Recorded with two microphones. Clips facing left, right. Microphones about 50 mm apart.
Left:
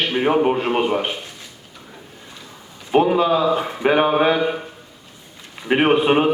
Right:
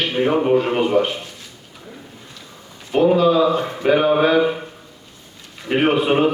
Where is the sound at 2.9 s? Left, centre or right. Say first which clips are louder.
Right 1 dB; left.